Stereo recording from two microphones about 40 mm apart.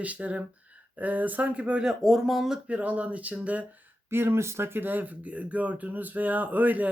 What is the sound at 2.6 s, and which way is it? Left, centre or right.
Speech, right.